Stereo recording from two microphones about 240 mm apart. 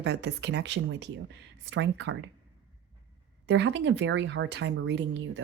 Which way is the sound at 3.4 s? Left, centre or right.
Right.